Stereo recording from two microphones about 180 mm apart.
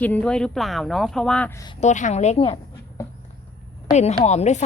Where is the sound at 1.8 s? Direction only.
40° left (ahead or behind).